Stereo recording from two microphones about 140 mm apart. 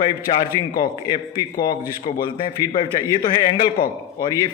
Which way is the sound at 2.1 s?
40° left (ahead or behind).